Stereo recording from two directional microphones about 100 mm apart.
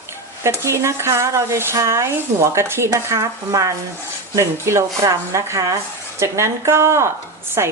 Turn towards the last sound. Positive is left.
turn(degrees=-25)  # may be behind; listen again after turning